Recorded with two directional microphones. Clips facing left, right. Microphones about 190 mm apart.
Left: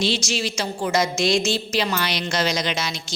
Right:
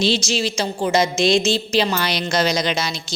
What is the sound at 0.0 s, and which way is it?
A woman's voice, 30° right (ahead or behind).